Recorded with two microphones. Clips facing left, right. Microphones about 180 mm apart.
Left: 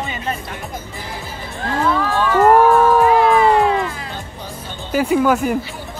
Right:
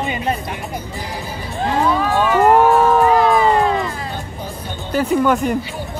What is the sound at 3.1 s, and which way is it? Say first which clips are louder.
Music: left 1 dB; 40° right (ahead or behind).